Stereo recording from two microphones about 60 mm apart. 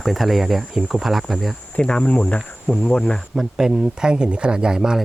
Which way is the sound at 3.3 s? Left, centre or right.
Centre.